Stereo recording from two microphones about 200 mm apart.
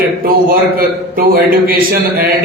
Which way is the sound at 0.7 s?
45° right (ahead or behind).